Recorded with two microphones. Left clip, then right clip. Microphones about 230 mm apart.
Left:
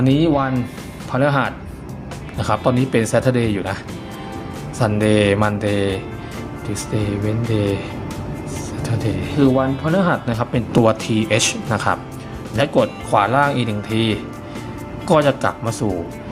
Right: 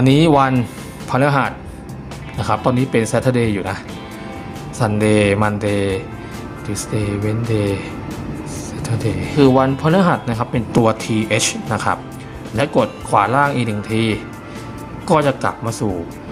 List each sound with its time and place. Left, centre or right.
0.0 s speech: centre
1.1 s speech: centre
4.8 s speech: centre
8.8 s music: centre
9.6 s speech: centre